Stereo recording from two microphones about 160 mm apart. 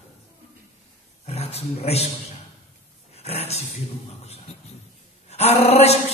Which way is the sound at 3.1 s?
40° left (ahead or behind).